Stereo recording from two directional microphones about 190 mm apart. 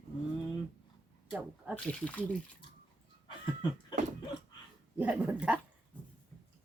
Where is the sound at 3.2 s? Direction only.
25° left (ahead or behind).